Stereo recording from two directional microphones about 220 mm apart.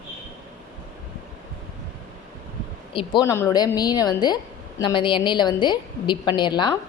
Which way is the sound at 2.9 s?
20° left (ahead or behind).